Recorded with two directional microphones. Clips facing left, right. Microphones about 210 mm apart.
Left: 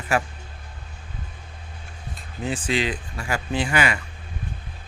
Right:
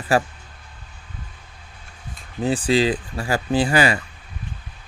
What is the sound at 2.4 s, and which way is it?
Speech, 35° right (ahead or behind).